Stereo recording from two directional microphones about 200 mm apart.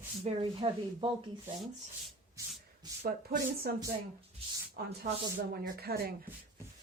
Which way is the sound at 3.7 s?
50° right (ahead or behind).